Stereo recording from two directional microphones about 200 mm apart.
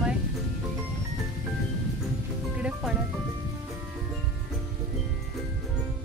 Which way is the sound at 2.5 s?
5° right (ahead or behind).